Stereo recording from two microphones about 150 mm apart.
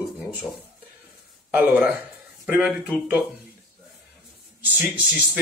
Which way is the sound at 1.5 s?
10° right (ahead or behind).